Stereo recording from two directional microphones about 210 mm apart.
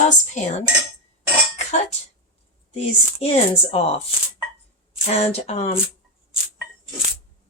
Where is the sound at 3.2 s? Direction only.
30° left (ahead or behind).